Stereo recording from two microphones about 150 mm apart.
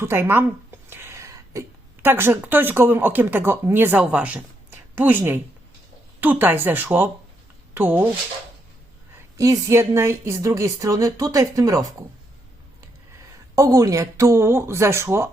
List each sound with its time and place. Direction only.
0.0 s speech: 15° right (ahead or behind)
9.4 s speech: 20° right (ahead or behind)
13.6 s speech: 20° right (ahead or behind)